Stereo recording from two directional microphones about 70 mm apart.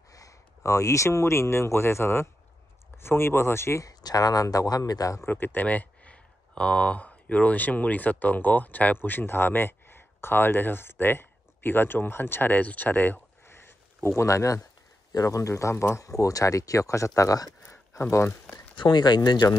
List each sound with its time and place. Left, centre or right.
0.1 s speech: left
3.8 s speech: left
5.2 s speech: left
16.0 s speech: left
18.8 s speech: left